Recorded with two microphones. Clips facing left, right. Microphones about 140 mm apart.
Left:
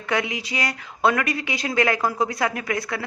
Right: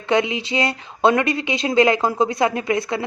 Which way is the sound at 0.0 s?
25° right (ahead or behind).